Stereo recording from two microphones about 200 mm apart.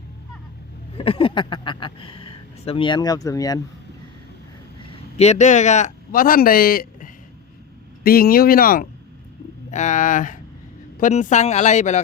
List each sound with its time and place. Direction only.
0.9 s speech: 30° left (ahead or behind)
4.9 s a man's voice: 30° left (ahead or behind)